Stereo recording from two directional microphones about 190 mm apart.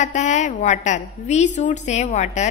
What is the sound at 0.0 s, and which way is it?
A woman's voice, 40° left (ahead or behind).